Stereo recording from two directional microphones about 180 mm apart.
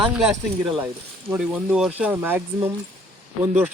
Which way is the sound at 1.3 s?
5° right (ahead or behind).